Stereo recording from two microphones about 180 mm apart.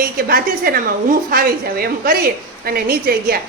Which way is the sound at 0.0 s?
55° right (ahead or behind).